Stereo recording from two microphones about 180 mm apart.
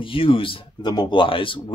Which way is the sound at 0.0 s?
30° left (ahead or behind).